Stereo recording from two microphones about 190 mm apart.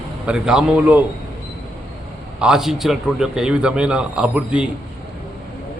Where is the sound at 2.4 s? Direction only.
5° right (ahead or behind).